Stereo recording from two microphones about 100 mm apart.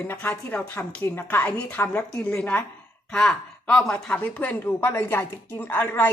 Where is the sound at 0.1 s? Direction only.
15° left (ahead or behind).